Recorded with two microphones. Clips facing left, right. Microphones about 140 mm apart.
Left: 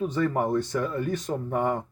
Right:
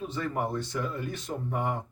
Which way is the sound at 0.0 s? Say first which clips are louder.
Left 6 dB; 45° left (ahead or behind).